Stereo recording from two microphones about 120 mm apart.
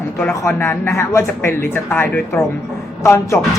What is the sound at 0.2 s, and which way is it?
Speech, 20° left (ahead or behind).